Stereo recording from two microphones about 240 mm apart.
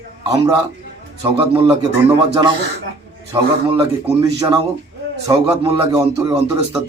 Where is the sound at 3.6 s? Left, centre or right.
Right.